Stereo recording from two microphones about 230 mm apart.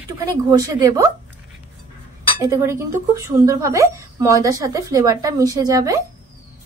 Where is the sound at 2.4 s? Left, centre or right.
Centre.